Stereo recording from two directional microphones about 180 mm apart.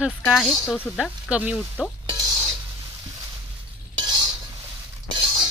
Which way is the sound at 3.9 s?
25° right (ahead or behind).